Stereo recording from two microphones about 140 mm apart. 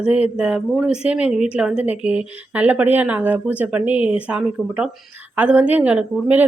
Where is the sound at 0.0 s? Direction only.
10° right (ahead or behind).